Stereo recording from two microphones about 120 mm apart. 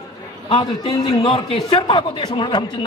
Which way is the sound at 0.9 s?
35° left (ahead or behind).